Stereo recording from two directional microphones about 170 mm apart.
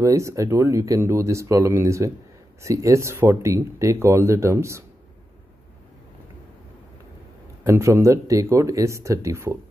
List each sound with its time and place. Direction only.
0.0 s speech: 15° right (ahead or behind)
7.6 s speech: 15° right (ahead or behind)